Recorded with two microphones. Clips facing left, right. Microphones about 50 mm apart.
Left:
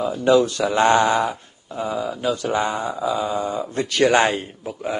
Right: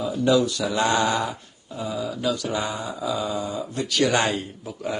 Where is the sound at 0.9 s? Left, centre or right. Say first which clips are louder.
Left 5 dB; left.